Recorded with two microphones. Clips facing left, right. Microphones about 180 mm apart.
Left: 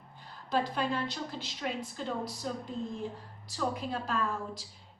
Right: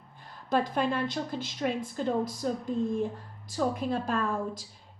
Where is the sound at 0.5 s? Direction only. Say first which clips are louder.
Right 4 dB; 50° right (ahead or behind).